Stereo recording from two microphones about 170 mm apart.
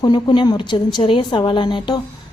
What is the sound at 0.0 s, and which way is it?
A woman's voice, 25° left (ahead or behind).